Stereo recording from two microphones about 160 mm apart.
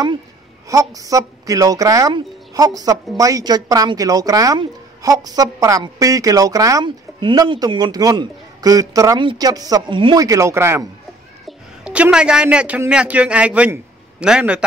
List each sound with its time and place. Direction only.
0.7 s speech: 20° right (ahead or behind)
10.2 s a man's voice: 20° right (ahead or behind)